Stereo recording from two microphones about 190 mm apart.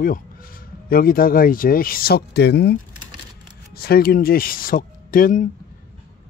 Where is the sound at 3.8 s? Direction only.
55° left (ahead or behind).